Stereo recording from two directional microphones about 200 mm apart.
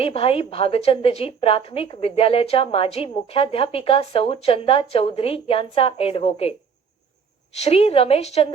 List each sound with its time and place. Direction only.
0.0 s a woman's voice: 30° left (ahead or behind)
7.5 s a woman's voice: 30° left (ahead or behind)